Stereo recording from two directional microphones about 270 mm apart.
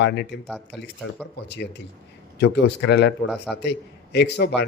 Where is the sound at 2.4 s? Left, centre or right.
Left.